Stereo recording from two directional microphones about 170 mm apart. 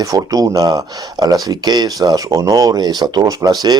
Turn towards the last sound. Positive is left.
turn(degrees=-20)  # may be behind; listen again after turning